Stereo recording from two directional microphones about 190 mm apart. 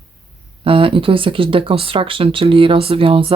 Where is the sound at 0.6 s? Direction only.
30° right (ahead or behind).